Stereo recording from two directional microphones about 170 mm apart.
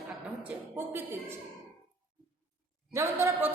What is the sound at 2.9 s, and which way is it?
Speech, 15° right (ahead or behind).